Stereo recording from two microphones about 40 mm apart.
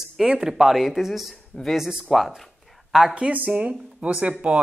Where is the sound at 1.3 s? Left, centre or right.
Centre.